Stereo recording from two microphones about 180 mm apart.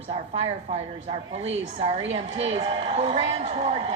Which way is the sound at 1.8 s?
35° right (ahead or behind).